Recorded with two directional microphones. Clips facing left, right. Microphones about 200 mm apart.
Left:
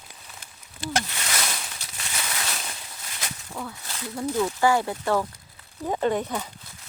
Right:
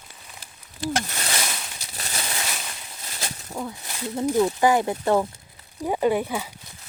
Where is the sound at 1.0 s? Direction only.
40° right (ahead or behind); by 5.3 s 20° right (ahead or behind).